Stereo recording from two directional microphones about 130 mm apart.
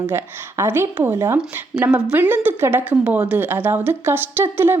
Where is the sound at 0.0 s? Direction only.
20° right (ahead or behind).